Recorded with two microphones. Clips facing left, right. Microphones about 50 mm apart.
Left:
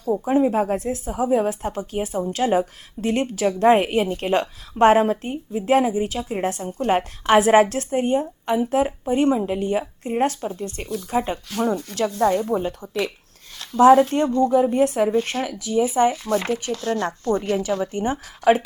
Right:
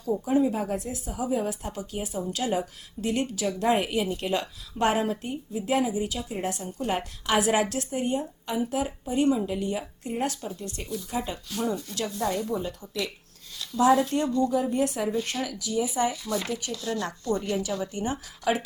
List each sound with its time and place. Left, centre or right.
0.1 s a woman's voice: left
11.4 s a woman's voice: left